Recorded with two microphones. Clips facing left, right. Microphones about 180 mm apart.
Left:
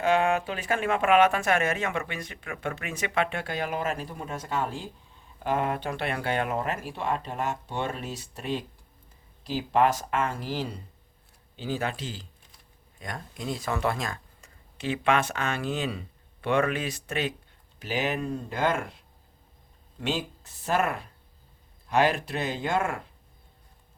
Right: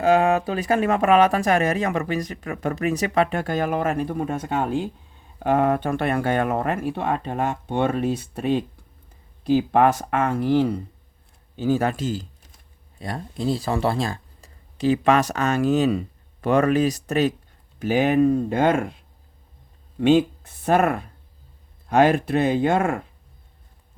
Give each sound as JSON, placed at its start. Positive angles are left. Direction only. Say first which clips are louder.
{"t": 0.0, "sound": "speech", "louder": "right 6 dB", "side_deg": -35}
{"t": 13.0, "sound": "speech", "louder": "right 8 dB", "side_deg": -30}
{"t": 17.7, "sound": "speech", "louder": "right 11 dB", "side_deg": -50}
{"t": 20.0, "sound": "speech", "louder": "right 14 dB", "side_deg": -55}